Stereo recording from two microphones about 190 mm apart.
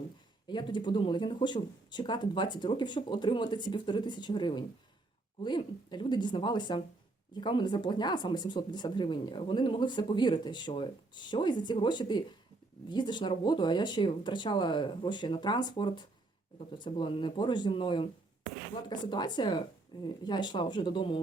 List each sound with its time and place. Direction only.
0.4 s speech: 25° left (ahead or behind)